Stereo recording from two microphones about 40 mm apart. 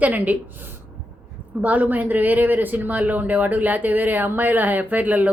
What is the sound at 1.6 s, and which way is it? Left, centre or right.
Speech, right.